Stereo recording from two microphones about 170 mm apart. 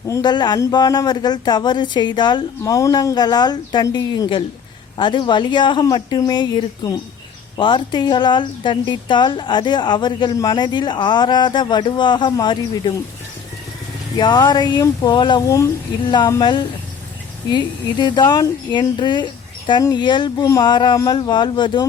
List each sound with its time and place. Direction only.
0.1 s speech: 25° left (ahead or behind)
14.2 s speech: 25° left (ahead or behind)